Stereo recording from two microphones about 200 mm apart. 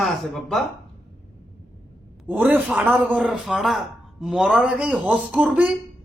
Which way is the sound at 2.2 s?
10° right (ahead or behind).